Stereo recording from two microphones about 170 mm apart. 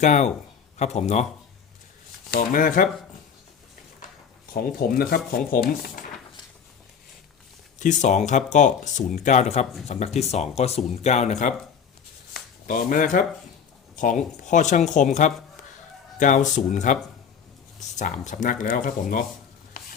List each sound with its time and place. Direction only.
0.0 s speech: 45° left (ahead or behind)
2.3 s speech: 50° left (ahead or behind)
4.5 s speech: 60° left (ahead or behind)
7.8 s speech: 45° left (ahead or behind)
12.3 s a sound: 50° left (ahead or behind)
14.4 s speech: 45° left (ahead or behind)